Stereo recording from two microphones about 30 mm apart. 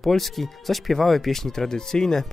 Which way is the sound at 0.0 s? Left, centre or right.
Centre.